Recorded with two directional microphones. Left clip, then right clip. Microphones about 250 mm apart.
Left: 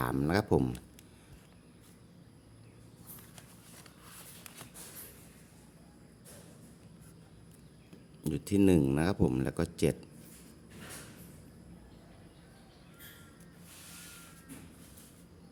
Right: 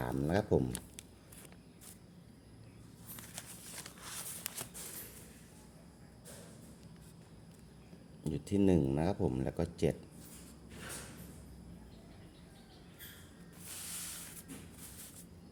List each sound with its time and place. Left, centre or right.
0.0 s speech: left
3.3 s a sound: right
8.2 s speech: left